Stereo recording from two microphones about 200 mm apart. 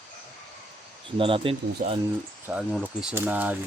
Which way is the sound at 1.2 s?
25° right (ahead or behind).